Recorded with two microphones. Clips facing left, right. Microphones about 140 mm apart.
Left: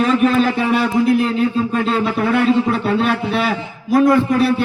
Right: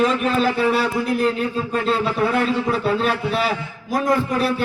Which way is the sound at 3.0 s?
40° right (ahead or behind).